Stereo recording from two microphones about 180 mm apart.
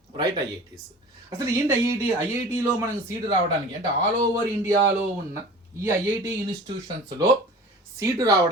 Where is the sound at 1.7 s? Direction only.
10° right (ahead or behind).